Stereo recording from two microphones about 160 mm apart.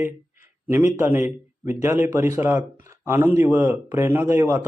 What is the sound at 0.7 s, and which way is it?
A man's voice, 15° right (ahead or behind).